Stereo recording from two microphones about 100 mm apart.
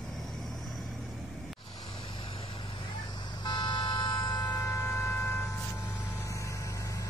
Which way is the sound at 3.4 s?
50° left (ahead or behind).